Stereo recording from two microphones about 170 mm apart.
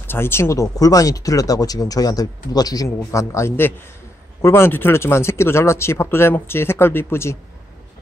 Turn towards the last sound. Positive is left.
turn(degrees=15)  # may be behind; listen again after turning